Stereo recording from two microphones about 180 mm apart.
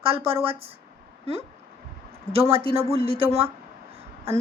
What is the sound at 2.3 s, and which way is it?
A woman's voice, 35° right (ahead or behind).